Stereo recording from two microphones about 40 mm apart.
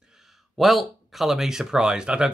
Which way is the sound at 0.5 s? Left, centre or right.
Centre.